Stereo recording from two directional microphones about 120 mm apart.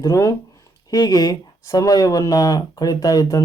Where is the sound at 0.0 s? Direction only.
30° left (ahead or behind).